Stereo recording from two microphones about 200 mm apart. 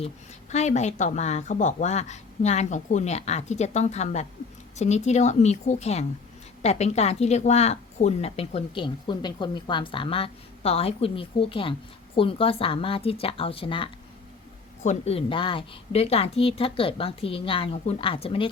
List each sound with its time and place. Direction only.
0.5 s a woman's voice: 35° left (ahead or behind)